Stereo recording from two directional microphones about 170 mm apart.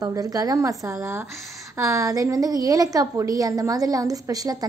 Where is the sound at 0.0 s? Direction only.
20° right (ahead or behind).